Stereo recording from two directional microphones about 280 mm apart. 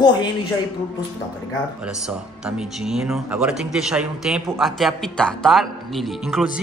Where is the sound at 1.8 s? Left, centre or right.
Centre.